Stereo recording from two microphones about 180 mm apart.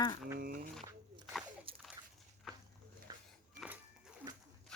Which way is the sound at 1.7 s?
30° right (ahead or behind).